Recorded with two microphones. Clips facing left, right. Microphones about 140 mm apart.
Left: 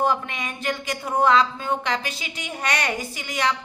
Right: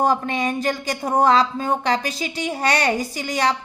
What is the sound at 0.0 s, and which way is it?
A woman's voice, 40° right (ahead or behind).